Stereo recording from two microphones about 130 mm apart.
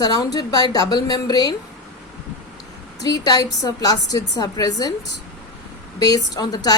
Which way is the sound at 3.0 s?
30° left (ahead or behind).